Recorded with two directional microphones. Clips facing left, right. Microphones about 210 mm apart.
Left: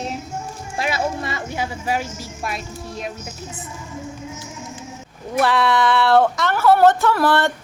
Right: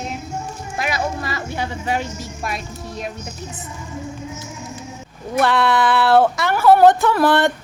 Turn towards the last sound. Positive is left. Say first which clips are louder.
# right 2 dB
turn(degrees=-20)  # may be behind; listen again after turning